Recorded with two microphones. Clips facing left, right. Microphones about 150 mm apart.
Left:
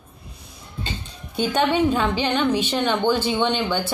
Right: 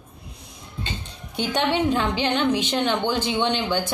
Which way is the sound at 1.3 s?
15° right (ahead or behind).